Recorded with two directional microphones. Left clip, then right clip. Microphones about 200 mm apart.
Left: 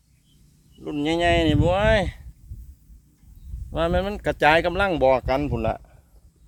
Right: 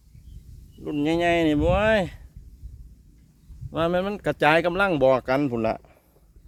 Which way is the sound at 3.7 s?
10° right (ahead or behind).